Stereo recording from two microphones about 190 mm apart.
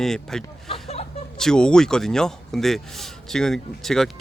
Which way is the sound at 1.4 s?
5° left (ahead or behind).